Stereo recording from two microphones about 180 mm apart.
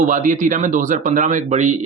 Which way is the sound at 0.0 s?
45° right (ahead or behind).